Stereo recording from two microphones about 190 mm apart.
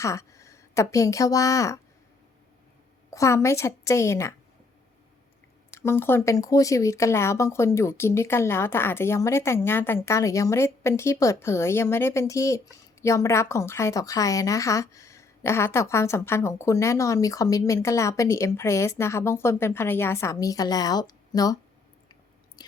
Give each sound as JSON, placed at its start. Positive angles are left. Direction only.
{"t": 0.0, "sound": "speech", "side_deg": 15}
{"t": 3.1, "sound": "speech", "side_deg": 15}
{"t": 5.7, "sound": "speech", "side_deg": 15}